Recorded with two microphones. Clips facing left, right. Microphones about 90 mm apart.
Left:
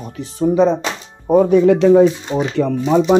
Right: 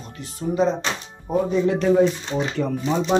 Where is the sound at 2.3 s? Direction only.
90° left.